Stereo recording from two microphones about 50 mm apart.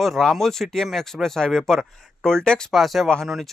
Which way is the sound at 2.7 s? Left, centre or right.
Centre.